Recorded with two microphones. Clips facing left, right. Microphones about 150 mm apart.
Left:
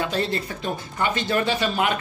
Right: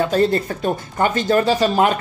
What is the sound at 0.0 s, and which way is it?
Speech, 45° right (ahead or behind).